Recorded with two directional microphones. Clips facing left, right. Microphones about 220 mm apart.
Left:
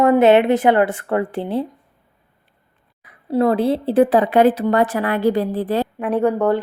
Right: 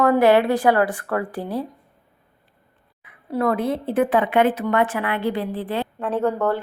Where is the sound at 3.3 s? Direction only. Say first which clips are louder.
Left 5 dB; 30° left (ahead or behind).